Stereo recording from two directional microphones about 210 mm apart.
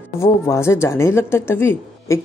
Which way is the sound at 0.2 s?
15° left (ahead or behind).